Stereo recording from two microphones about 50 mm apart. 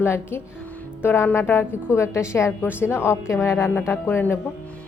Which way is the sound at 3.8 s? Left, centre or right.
Left.